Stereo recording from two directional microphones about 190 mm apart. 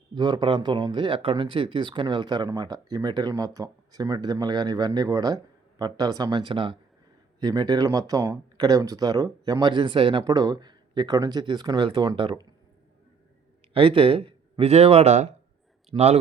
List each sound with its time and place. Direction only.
0.1 s speech: 25° right (ahead or behind)
13.7 s speech: 30° right (ahead or behind)